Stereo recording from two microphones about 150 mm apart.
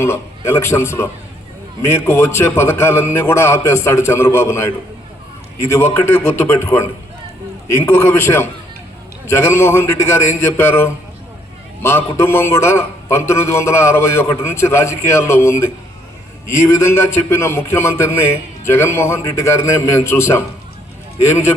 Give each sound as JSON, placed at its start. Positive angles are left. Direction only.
{"t": 0.0, "sound": "a man's voice", "side_deg": 15}